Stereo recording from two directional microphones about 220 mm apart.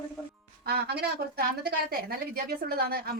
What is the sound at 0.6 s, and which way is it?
A woman's voice, 45° right (ahead or behind).